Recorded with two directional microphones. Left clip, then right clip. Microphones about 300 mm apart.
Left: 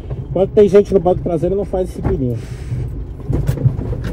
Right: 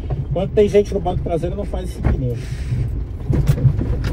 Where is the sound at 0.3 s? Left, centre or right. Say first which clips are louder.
Left 5 dB; left.